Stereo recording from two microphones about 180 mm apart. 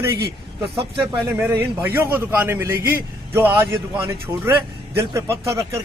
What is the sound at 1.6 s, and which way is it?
A man's voice, 10° right (ahead or behind).